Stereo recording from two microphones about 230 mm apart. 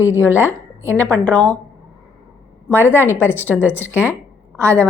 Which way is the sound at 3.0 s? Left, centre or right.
Centre.